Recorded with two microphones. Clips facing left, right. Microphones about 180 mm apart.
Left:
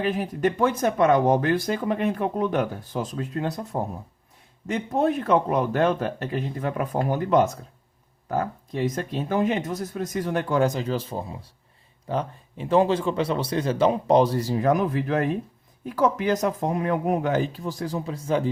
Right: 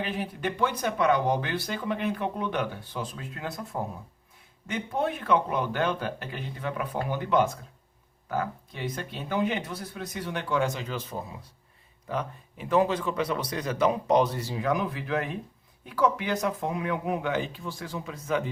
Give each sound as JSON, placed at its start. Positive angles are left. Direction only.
{"t": 0.0, "sound": "a man's voice", "side_deg": 45}